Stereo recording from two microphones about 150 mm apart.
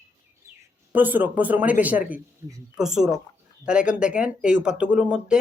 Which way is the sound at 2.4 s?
20° right (ahead or behind).